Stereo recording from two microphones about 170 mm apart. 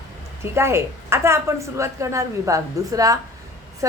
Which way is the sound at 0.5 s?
15° right (ahead or behind).